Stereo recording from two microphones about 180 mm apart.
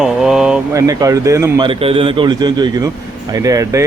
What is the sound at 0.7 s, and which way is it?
A man's voice, 20° right (ahead or behind).